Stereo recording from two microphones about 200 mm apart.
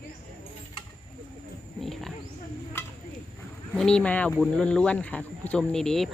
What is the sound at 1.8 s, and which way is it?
Cricket, centre (ahead or behind).